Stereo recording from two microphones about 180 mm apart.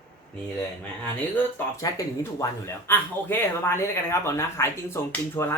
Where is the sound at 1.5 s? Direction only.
15° left (ahead or behind).